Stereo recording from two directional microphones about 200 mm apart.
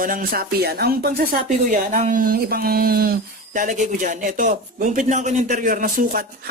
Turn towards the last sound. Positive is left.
turn(degrees=-45)  # may be behind; listen again after turning